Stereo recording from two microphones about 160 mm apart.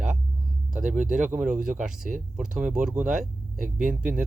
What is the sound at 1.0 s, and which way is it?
Speech, 50° right (ahead or behind).